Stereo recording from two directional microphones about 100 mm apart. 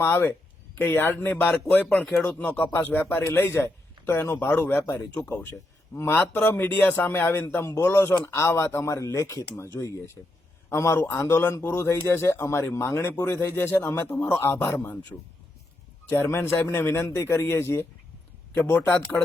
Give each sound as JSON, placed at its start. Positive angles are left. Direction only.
{"t": 0.0, "sound": "a man's voice", "side_deg": 20}
{"t": 10.7, "sound": "a man's voice", "side_deg": 25}
{"t": 16.0, "sound": "a man's voice", "side_deg": 20}